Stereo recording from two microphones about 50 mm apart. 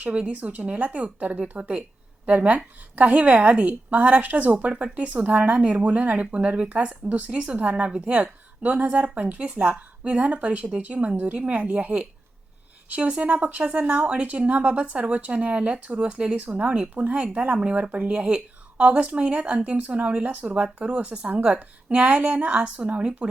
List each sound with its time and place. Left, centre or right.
0.0 s speech: right
16.9 s speech: right
17.2 s speech: right
18.8 s speech: right